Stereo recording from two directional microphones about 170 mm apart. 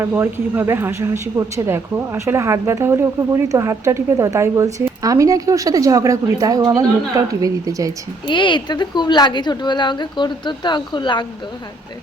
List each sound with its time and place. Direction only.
0.1 s speech: 10° right (ahead or behind)
8.3 s speech: 30° left (ahead or behind)